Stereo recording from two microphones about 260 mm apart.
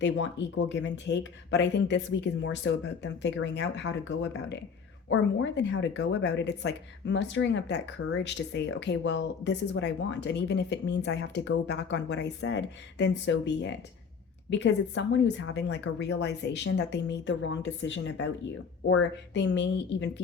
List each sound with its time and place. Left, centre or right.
0.0 s speech: left
5.0 s speech: left